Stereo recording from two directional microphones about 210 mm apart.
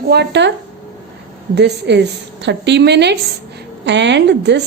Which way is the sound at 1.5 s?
55° right (ahead or behind).